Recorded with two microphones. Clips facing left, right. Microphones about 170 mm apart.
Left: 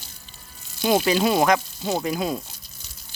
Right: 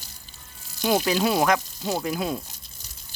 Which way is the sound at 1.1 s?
Centre (ahead or behind).